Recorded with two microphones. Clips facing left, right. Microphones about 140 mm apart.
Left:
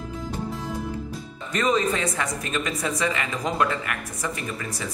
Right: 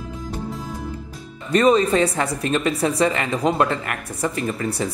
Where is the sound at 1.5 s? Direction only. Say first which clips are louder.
Right 7 dB; 35° right (ahead or behind).